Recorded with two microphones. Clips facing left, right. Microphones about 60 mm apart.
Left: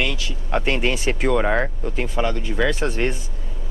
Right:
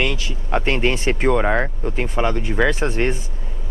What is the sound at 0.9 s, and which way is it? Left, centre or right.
Speech, right.